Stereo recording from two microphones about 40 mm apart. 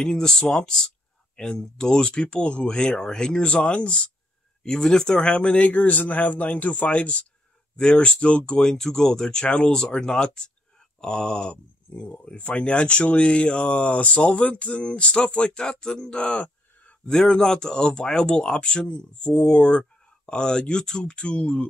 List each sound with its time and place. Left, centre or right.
0.0 s speech: centre
4.6 s speech: centre; by 7.2 s left
7.7 s speech: left
8.5 s speech: centre
16.3 s a sound: left
17.1 s speech: centre